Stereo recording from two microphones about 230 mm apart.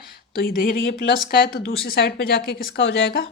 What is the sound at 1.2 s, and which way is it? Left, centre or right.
Speech, left.